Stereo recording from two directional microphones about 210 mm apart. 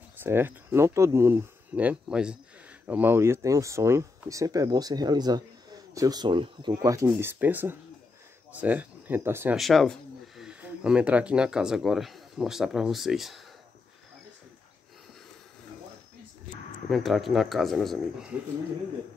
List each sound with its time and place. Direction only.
0.2 s speech: 10° right (ahead or behind)
9.6 s speech: centre (ahead or behind)
16.9 s speech: centre (ahead or behind)